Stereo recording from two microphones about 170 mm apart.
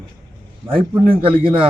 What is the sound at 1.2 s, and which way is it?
Speech, 30° right (ahead or behind).